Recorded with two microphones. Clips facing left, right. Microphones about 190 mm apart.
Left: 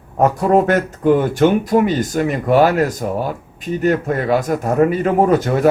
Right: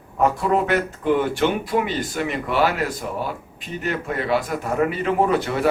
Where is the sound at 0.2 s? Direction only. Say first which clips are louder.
Left 6 dB; 45° left (ahead or behind).